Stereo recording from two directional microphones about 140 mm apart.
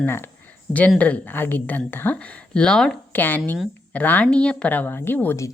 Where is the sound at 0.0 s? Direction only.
15° left (ahead or behind).